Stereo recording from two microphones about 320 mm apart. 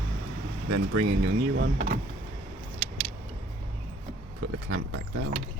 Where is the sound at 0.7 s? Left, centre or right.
Right.